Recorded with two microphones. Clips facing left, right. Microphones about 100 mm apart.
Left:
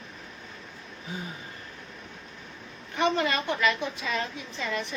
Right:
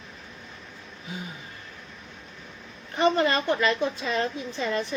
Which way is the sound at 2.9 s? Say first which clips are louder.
Right 3 dB; 40° right (ahead or behind).